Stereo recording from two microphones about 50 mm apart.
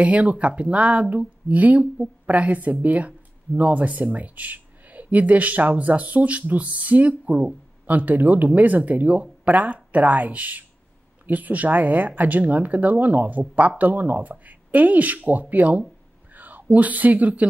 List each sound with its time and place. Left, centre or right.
0.0 s speech: right
16.3 s a sound: right
16.7 s speech: right